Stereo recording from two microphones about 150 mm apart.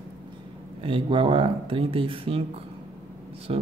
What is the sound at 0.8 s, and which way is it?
Speech, 35° right (ahead or behind).